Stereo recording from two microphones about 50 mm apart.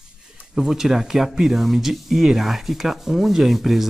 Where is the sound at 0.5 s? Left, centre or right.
Centre.